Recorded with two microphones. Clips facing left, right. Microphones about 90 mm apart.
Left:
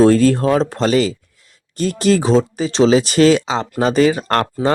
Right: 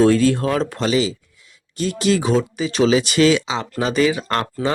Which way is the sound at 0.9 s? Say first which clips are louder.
Left 3 dB; 50° left (ahead or behind).